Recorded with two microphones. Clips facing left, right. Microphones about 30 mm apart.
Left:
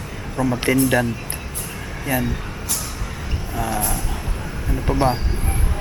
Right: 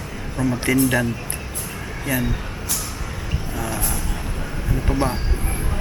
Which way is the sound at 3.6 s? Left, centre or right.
Centre.